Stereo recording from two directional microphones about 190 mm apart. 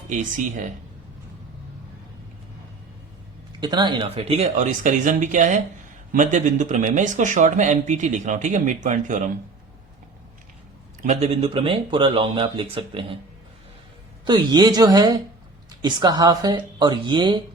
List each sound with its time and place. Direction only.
0.1 s speech: 40° right (ahead or behind)
3.6 s speech: 25° right (ahead or behind); by 9.2 s 40° right (ahead or behind)
11.0 s speech: 35° right (ahead or behind)
14.3 s speech: 20° right (ahead or behind)